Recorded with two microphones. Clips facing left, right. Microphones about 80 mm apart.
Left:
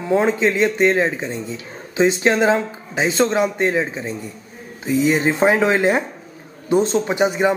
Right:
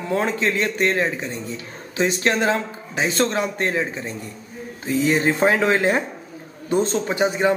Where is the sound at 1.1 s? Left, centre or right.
Left.